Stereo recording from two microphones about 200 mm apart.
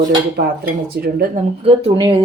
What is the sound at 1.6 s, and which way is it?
Speech, 25° right (ahead or behind).